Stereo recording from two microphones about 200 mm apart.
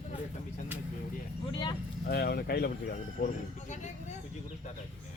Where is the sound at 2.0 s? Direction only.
50° left (ahead or behind).